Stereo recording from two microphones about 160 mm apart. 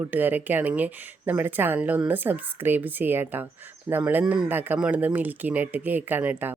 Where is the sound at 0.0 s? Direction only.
10° right (ahead or behind).